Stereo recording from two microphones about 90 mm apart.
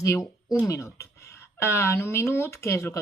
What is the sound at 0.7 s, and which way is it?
Speech, 35° left (ahead or behind).